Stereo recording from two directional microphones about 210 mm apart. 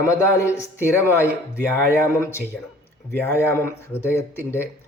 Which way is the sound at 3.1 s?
10° left (ahead or behind).